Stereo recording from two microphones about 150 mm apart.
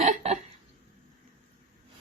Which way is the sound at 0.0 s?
50° right (ahead or behind).